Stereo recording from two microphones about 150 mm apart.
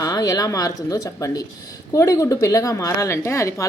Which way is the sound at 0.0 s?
20° left (ahead or behind).